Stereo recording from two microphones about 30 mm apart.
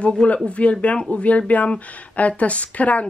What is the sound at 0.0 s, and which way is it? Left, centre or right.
Speech, left.